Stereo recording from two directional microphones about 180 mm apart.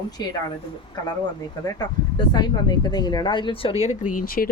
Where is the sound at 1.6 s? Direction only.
25° left (ahead or behind).